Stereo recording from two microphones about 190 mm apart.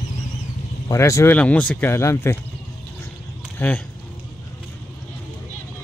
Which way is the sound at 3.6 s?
10° left (ahead or behind).